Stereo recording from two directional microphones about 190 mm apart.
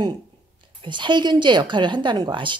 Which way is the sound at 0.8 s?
25° right (ahead or behind).